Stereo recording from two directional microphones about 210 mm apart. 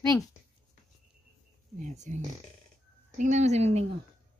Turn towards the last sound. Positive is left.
turn(degrees=-30)  # may be behind; listen again after turning